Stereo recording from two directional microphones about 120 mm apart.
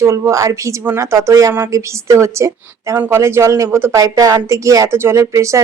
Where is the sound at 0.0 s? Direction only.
25° right (ahead or behind).